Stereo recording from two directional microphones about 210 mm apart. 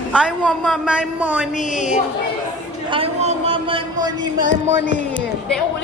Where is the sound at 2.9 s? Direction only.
30° right (ahead or behind).